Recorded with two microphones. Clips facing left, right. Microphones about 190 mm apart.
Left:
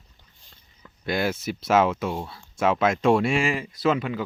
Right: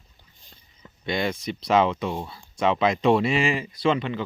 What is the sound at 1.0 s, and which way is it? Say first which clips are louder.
Speech: left 1 dB; 5° left (ahead or behind).